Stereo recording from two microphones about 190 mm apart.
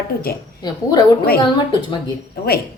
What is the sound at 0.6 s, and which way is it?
Speech, 20° left (ahead or behind).